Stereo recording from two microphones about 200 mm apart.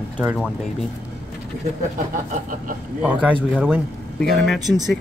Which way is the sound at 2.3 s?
40° right (ahead or behind).